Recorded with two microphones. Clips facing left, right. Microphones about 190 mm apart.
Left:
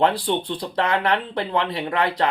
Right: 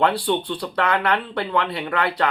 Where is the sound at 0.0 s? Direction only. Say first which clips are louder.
Even; 25° left (ahead or behind).